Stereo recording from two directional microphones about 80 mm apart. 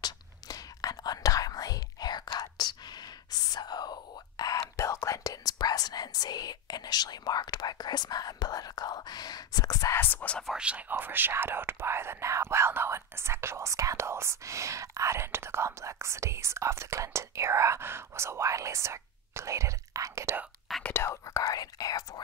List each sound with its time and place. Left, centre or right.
0.0 s whispering: left
9.9 s speech: left
10.5 s speech: centre
10.9 s speech: right
20.7 s whispering: centre
21.0 s speech: left